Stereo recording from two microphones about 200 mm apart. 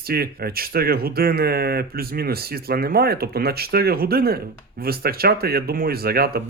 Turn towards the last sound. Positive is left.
turn(degrees=-50)  # may be behind; listen again after turning